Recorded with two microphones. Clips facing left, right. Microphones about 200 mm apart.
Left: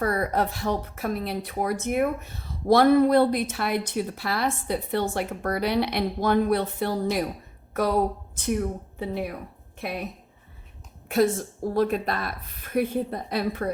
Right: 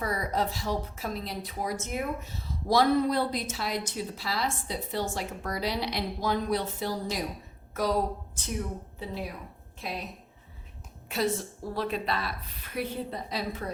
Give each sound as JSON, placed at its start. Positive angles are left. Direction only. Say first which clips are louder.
{"t": 0.0, "sound": "a woman's voice", "louder": "left 5 dB", "side_deg": 60}
{"t": 11.7, "sound": "a woman's voice", "louder": "left 6 dB", "side_deg": 50}